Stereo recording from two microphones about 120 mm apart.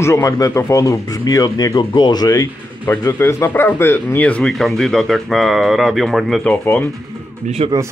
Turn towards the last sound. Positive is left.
turn(degrees=-60)  # may be behind; listen again after turning